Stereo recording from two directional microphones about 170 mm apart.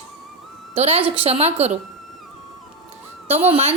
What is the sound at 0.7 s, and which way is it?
A woman's voice, 40° right (ahead or behind).